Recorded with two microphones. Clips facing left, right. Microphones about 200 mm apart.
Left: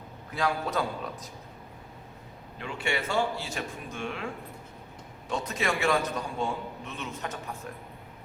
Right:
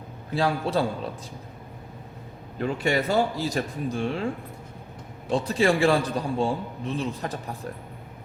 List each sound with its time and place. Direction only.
0.3 s a man's voice: 30° right (ahead or behind)
2.6 s a man's voice: 40° right (ahead or behind)
5.3 s a man's voice: 30° right (ahead or behind)